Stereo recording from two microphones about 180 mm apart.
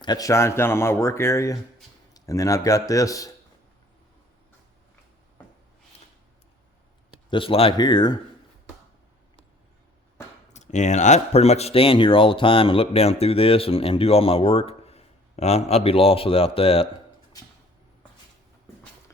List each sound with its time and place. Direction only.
0.0 s a man's voice: 20° left (ahead or behind)
7.3 s a man's voice: 30° left (ahead or behind)
10.5 s speech: 40° left (ahead or behind)
17.3 s a sound: 20° left (ahead or behind)